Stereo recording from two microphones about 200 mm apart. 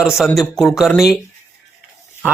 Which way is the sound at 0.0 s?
Centre (ahead or behind).